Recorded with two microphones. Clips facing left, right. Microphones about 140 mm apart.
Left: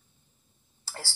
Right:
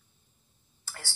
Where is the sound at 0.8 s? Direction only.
30° left (ahead or behind).